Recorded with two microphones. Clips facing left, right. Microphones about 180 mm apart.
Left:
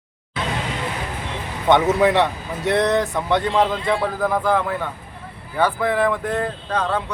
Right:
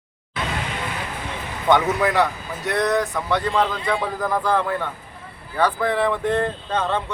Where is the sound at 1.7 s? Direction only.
25° left (ahead or behind).